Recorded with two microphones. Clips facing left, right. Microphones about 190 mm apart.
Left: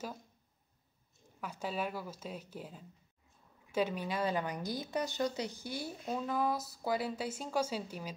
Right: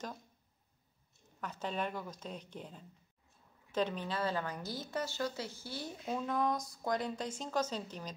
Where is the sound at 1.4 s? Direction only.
10° left (ahead or behind).